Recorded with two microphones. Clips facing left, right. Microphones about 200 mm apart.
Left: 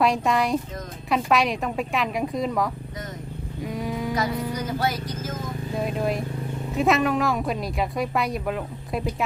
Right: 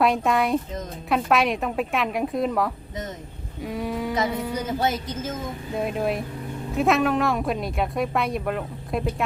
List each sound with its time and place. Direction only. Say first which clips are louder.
0.0 s speech: right 1 dB; centre (ahead or behind)
4.8 s speech: right 2 dB; 25° right (ahead or behind)
5.7 s speech: right 1 dB; centre (ahead or behind)